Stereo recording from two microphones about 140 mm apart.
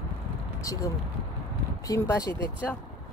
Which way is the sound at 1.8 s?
20° left (ahead or behind).